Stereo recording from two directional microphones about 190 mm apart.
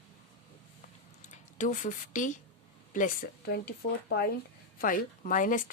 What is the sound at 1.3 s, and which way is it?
Speech, 40° left (ahead or behind).